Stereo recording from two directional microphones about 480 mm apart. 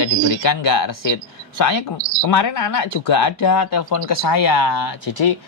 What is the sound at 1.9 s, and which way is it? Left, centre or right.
Speech, right.